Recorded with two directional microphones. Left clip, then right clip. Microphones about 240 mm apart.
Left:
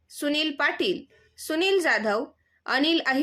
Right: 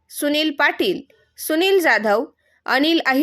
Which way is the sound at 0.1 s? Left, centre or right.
Right.